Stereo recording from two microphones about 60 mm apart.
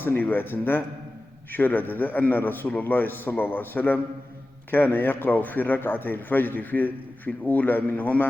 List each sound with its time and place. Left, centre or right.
0.0 s a man's voice: left